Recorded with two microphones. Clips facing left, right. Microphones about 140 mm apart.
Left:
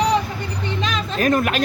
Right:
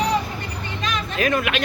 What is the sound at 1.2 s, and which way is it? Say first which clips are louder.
Speech: left 3 dB; 40° left (ahead or behind).